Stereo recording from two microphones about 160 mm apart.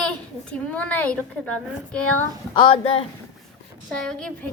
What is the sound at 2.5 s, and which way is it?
Speech, 30° left (ahead or behind).